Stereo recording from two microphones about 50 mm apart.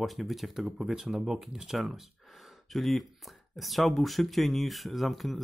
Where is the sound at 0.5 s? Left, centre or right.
Centre.